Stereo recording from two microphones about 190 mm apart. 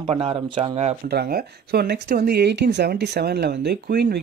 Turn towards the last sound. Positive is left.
turn(degrees=-55)  # may be behind; listen again after turning